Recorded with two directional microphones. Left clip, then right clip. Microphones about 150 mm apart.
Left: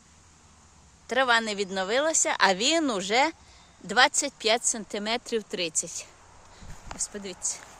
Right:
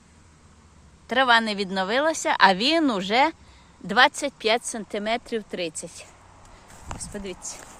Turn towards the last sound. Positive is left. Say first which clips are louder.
# even
turn(degrees=15)  # may be behind; listen again after turning